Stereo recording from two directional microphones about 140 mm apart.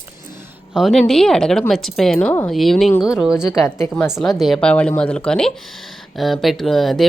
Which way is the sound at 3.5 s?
20° left (ahead or behind).